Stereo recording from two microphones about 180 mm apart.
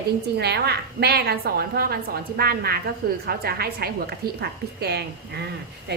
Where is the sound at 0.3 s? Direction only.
65° right (ahead or behind).